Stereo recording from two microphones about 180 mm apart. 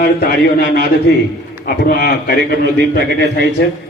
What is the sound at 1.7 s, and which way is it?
A man's voice, 55° left (ahead or behind).